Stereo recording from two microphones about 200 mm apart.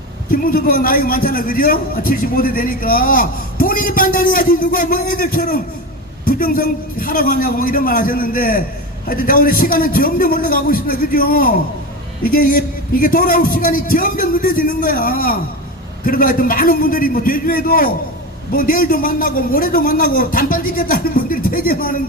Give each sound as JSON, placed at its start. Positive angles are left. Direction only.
{"t": 0.3, "sound": "a man's voice", "side_deg": 45}